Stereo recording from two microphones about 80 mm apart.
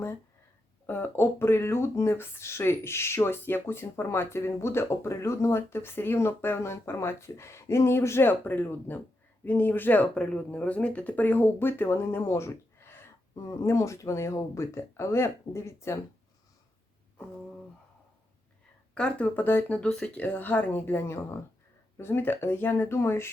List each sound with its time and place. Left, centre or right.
0.9 s speech: left
18.9 s speech: centre
19.4 s speech: left